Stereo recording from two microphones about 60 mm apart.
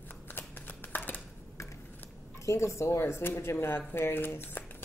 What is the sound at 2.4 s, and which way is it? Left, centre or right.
Speech, left.